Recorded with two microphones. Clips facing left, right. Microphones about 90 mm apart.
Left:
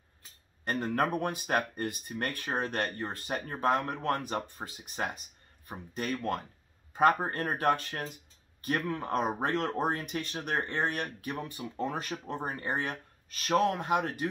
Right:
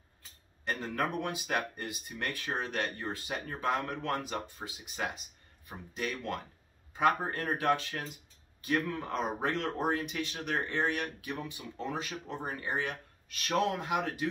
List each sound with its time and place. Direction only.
0.7 s speech: 45° left (ahead or behind)